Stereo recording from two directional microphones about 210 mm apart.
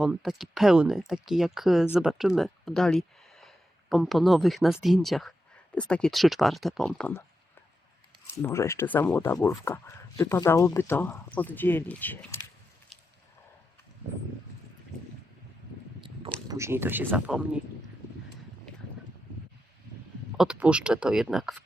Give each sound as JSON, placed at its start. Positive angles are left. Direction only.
{"t": 0.0, "sound": "speech", "side_deg": -5}
{"t": 8.4, "sound": "speech", "side_deg": 10}
{"t": 16.5, "sound": "speech", "side_deg": -15}
{"t": 20.3, "sound": "speech", "side_deg": -5}